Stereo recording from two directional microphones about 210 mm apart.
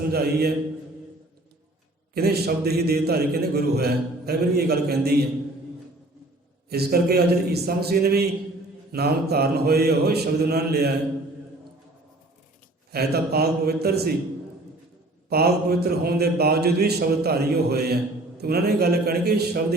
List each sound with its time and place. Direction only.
0.1 s mantra: 50° right (ahead or behind)
2.1 s mantra: 50° right (ahead or behind)
6.7 s mantra: 50° right (ahead or behind)
12.9 s mantra: 50° right (ahead or behind)
15.3 s mantra: 50° right (ahead or behind)